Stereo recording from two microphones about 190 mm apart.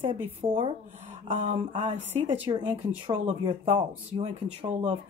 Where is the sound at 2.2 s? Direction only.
25° right (ahead or behind).